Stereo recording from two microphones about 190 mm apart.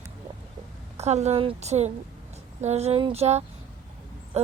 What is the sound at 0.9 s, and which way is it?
Speech, 35° right (ahead or behind).